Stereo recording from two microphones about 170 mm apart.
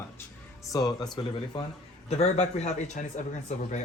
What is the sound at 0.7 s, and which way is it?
Speech, 25° left (ahead or behind).